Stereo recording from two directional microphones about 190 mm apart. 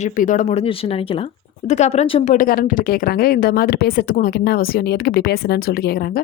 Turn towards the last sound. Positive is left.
turn(degrees=55)  # may be behind; listen again after turning